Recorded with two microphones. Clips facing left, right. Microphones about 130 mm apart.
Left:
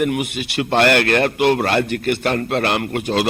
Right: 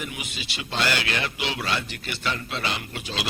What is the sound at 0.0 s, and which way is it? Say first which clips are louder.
A man's voice: left 15 dB; 60° left (ahead or behind).